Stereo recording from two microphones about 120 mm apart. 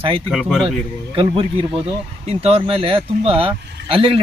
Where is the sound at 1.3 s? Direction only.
50° right (ahead or behind).